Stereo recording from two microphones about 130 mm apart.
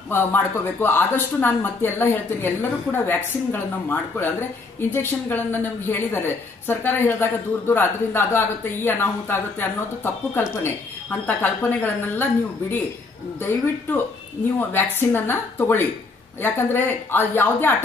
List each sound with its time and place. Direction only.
0.1 s speech: 15° left (ahead or behind)